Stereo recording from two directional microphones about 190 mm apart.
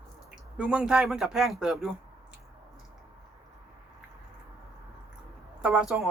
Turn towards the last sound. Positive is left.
turn(degrees=-5)  # may be behind; listen again after turning